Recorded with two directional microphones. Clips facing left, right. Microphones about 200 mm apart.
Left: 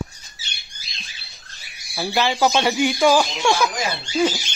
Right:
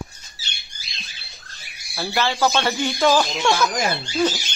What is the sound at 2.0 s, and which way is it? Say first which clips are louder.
Speech: left 2 dB; 15° left (ahead or behind).